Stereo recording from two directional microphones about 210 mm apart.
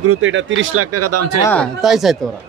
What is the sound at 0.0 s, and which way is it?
Speech, 80° right.